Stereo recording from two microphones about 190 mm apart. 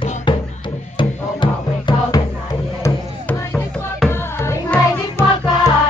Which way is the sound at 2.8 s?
10° left (ahead or behind).